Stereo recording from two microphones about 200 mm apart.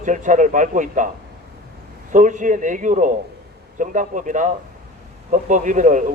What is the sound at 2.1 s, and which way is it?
A man's voice, 40° right (ahead or behind).